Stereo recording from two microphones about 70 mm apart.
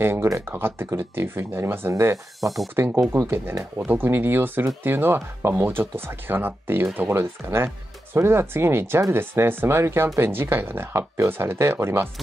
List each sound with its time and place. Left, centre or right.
0.0 s speech: right
3.8 s speech: right